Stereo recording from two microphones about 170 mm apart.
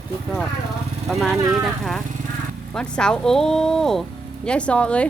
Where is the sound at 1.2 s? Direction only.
Centre (ahead or behind).